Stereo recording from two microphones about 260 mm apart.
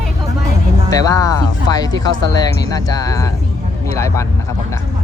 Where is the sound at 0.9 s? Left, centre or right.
Centre.